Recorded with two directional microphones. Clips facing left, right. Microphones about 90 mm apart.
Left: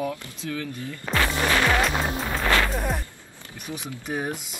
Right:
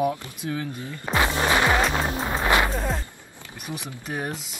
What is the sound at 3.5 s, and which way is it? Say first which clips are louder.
Speech: even; 20° right (ahead or behind).